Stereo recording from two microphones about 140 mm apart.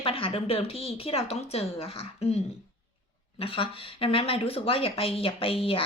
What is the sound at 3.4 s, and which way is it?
Speech, 40° left (ahead or behind).